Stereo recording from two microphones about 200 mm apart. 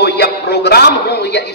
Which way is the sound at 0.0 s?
55° left (ahead or behind).